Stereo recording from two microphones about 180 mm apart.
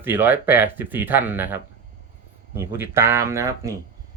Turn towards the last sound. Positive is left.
turn(degrees=-15)  # may be behind; listen again after turning